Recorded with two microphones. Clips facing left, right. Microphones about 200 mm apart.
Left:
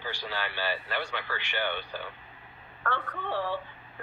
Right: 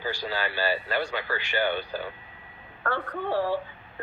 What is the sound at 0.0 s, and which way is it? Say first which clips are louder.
A woman's voice: right 5 dB; 40° right (ahead or behind).